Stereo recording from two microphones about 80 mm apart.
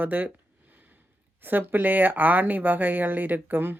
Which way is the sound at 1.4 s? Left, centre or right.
Right.